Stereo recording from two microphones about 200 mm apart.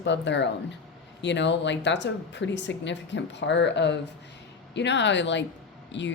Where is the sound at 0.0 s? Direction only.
60° left (ahead or behind).